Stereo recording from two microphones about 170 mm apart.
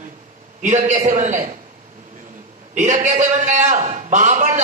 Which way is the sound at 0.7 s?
45° right (ahead or behind).